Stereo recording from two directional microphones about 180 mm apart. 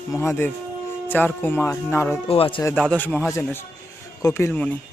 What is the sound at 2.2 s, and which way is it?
Speech, 30° left (ahead or behind).